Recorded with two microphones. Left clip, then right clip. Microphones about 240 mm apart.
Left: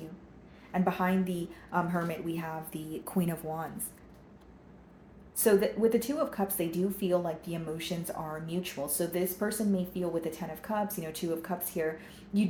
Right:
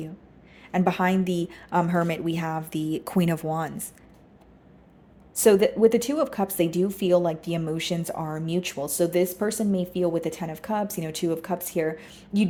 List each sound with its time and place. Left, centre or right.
0.7 s speech: right
5.4 s speech: right